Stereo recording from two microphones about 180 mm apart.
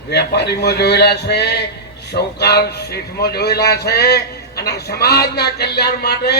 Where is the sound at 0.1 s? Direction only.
65° left (ahead or behind).